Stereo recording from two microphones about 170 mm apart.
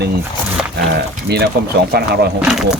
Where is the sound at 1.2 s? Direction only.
75° right (ahead or behind).